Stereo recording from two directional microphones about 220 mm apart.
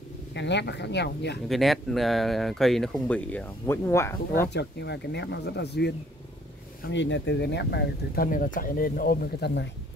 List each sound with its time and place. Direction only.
0.3 s speech: 50° left (ahead or behind)
1.5 s speech: centre (ahead or behind)
4.5 s speech: 50° left (ahead or behind)